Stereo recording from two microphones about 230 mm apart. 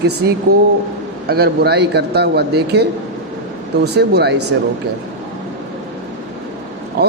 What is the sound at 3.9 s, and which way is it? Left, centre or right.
Speech, right.